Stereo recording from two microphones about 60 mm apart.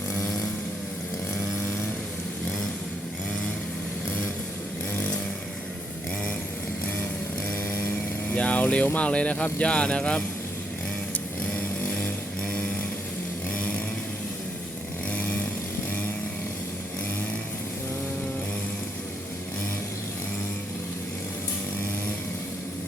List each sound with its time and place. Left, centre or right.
7.7 s vehicle: left
8.3 s vehicle: left
9.0 s speech: left
12.0 s a sound: left
13.5 s chainsaw: left